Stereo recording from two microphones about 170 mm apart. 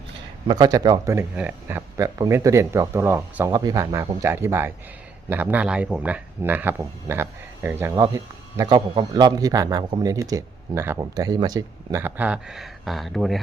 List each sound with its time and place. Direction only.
0.4 s speech: 25° right (ahead or behind); by 13.4 s centre (ahead or behind)